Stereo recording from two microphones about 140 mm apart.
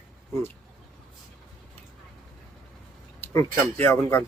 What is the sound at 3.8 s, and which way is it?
Speech, 15° left (ahead or behind).